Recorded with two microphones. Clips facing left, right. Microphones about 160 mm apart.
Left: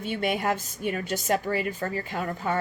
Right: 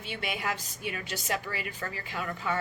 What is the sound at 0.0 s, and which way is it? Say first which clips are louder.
A woman's voice: left 8 dB; 45° left (ahead or behind).